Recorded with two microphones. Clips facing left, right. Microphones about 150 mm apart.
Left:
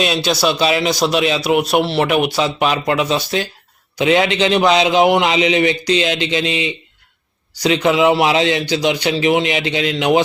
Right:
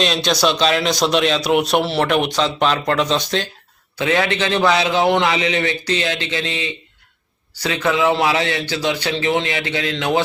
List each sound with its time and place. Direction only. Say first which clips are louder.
0.0 s a man's voice: left 1 dB; 5° left (ahead or behind)
3.9 s a man's voice: left 4 dB; 20° left (ahead or behind)